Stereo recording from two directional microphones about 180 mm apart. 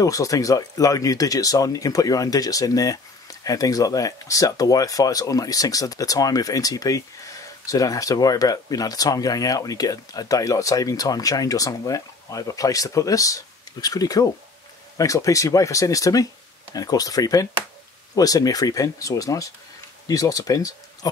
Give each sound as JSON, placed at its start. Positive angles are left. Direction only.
{"t": 0.0, "sound": "speech", "side_deg": 20}